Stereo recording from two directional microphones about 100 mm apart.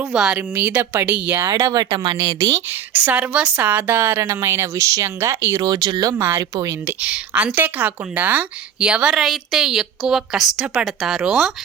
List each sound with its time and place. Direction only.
0.0 s speech: 5° right (ahead or behind)
0.3 s speech: 20° right (ahead or behind)
1.5 s speech: 35° right (ahead or behind)
2.6 s speech: 20° right (ahead or behind)
5.6 s speech: 45° right (ahead or behind)
6.1 s speech: 20° right (ahead or behind)
6.4 s speech: 35° right (ahead or behind)
7.0 s a woman's voice: 15° right (ahead or behind)